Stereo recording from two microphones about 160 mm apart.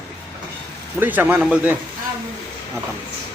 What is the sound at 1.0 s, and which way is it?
Speech, 10° right (ahead or behind).